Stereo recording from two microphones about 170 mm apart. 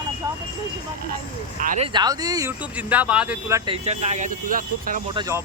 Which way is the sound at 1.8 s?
25° right (ahead or behind).